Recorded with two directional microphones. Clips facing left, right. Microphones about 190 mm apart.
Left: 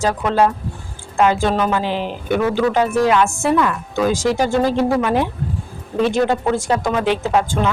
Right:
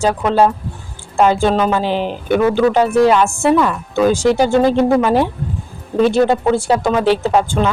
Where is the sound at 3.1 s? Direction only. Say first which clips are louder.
Right 2 dB; 30° right (ahead or behind).